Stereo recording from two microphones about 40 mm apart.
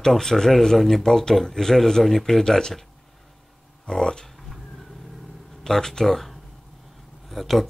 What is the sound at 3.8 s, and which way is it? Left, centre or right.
Speech, centre.